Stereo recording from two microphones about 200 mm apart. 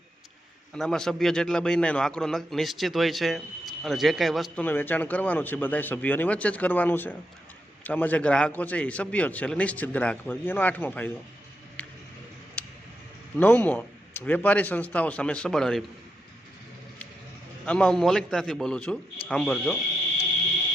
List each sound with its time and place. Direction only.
0.7 s a man's voice: centre (ahead or behind)
11.8 s a sound: 5° left (ahead or behind)
13.4 s a man's voice: 10° left (ahead or behind)
17.7 s a man's voice: 5° left (ahead or behind)